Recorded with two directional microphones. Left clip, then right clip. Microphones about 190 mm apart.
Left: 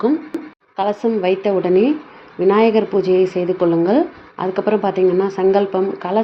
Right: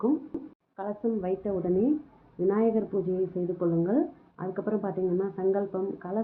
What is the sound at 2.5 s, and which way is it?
Speech, 35° left (ahead or behind).